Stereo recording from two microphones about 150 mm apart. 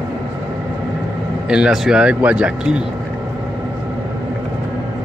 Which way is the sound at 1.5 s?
5° right (ahead or behind).